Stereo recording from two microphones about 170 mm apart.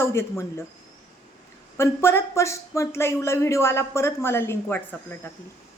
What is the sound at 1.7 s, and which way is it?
A woman's voice, 15° left (ahead or behind).